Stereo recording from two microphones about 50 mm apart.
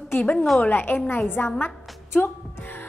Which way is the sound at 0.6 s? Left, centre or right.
Left.